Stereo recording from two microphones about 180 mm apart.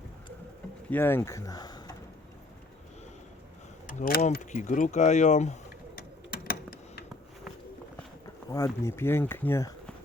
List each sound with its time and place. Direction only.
0.9 s speech: 10° left (ahead or behind)
3.8 s speech: 50° left (ahead or behind)
6.0 s a sound: 55° left (ahead or behind)
8.4 s speech: 15° left (ahead or behind)